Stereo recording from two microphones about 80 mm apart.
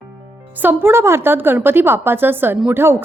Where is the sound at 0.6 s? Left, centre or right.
Right.